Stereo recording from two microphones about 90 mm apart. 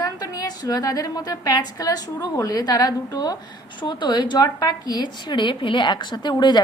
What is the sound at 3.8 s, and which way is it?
A woman's voice, 60° left (ahead or behind).